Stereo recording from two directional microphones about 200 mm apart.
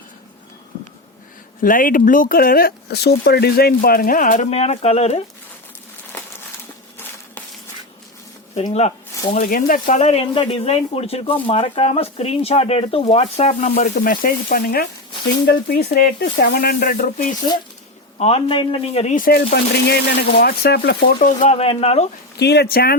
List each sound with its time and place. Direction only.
1.6 s speech: 45° left (ahead or behind)
8.5 s speech: 30° left (ahead or behind)
9.3 s speech: 45° left (ahead or behind)
18.2 s speech: 30° left (ahead or behind)
22.4 s speech: 55° left (ahead or behind)